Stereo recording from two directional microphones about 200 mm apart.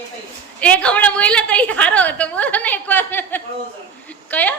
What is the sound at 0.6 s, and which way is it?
A woman's voice, 5° left (ahead or behind).